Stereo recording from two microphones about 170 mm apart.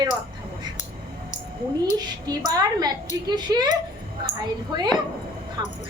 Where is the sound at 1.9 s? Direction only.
25° right (ahead or behind).